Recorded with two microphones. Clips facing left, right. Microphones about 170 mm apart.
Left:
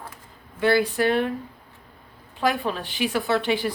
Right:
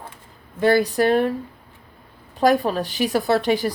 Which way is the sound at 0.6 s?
40° right (ahead or behind).